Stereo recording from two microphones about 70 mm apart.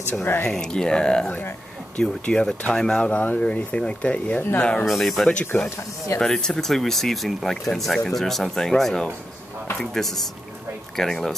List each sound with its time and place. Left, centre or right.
0.1 s speech: left
0.4 s speech: centre
4.8 s speech: centre
5.3 s speech: left
6.1 s speech: centre